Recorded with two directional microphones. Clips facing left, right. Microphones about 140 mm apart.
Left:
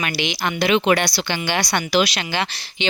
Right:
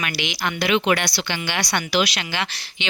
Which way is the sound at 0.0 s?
30° left (ahead or behind).